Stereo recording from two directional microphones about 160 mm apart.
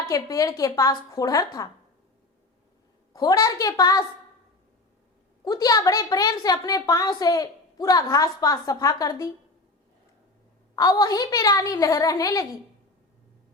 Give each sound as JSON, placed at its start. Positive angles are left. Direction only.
{"t": 0.0, "sound": "a woman's voice", "side_deg": 20}
{"t": 3.1, "sound": "a woman's voice", "side_deg": 25}
{"t": 5.5, "sound": "a woman's voice", "side_deg": 25}
{"t": 10.8, "sound": "a woman's voice", "side_deg": 25}